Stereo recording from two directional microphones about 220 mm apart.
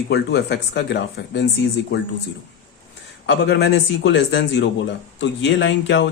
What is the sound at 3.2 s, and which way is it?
Speech, 55° left (ahead or behind).